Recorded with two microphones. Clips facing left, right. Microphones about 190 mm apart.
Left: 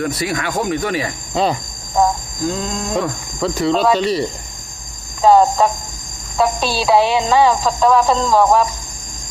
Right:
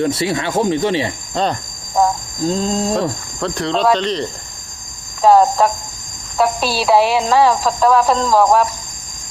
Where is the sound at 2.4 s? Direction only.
30° right (ahead or behind).